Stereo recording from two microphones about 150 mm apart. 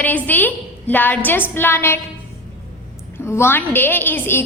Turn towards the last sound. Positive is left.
turn(degrees=15)  # may be behind; listen again after turning